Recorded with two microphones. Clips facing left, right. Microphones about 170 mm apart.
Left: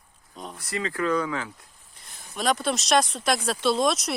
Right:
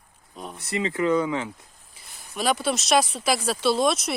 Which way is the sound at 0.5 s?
25° right (ahead or behind).